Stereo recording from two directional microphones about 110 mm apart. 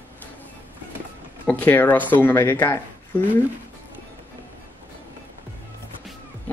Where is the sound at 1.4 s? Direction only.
15° left (ahead or behind).